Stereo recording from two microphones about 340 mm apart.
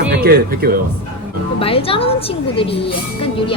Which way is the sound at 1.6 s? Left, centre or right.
Centre.